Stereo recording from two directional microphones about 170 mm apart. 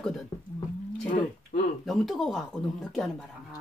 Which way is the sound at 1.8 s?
Centre (ahead or behind).